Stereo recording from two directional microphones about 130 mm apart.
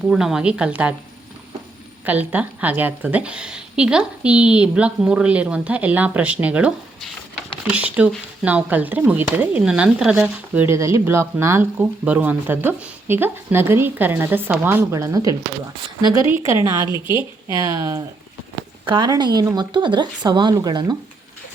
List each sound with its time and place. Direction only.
0.1 s speech: 5° right (ahead or behind)
2.0 s speech: 10° right (ahead or behind); by 20.9 s 30° right (ahead or behind)